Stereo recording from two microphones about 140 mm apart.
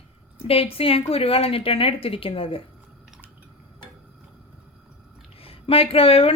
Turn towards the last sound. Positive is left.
turn(degrees=45)  # may be behind; listen again after turning